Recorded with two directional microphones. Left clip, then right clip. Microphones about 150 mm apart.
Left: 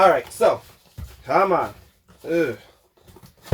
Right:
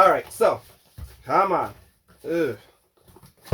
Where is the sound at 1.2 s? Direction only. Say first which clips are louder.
Left 2 dB; 25° right (ahead or behind).